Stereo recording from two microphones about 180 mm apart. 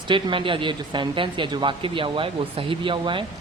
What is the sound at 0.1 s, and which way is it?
Speech, 30° right (ahead or behind).